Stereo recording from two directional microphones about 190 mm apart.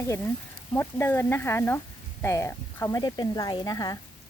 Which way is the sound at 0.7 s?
10° left (ahead or behind).